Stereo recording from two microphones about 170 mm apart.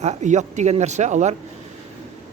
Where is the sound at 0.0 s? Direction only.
40° right (ahead or behind).